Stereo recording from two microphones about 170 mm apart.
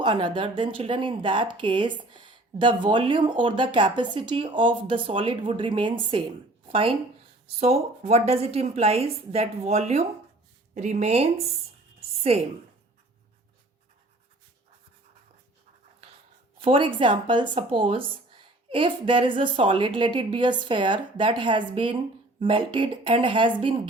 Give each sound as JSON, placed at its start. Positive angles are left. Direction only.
{"t": 0.0, "sound": "a woman's voice", "side_deg": -30}
{"t": 11.9, "sound": "a sound", "side_deg": -35}
{"t": 16.6, "sound": "speech", "side_deg": -30}